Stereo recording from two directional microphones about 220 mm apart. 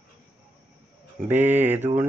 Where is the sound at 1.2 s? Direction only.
10° right (ahead or behind).